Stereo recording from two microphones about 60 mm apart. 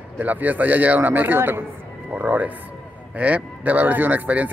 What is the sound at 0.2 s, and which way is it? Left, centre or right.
Speech, right.